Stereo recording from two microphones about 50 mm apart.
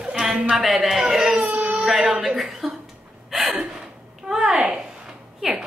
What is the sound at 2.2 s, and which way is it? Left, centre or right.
Speech, centre.